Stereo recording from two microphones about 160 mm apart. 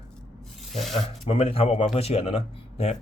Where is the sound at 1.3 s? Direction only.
35° left (ahead or behind).